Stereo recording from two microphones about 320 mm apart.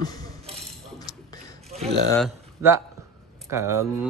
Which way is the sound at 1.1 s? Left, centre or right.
Centre.